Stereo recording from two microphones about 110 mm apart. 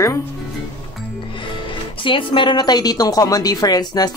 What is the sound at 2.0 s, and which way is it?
A woman's voice, 50° left (ahead or behind).